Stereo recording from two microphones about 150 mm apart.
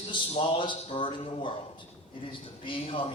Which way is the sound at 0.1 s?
35° left (ahead or behind).